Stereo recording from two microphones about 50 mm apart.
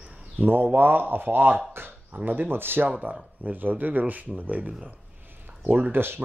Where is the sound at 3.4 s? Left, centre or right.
Right.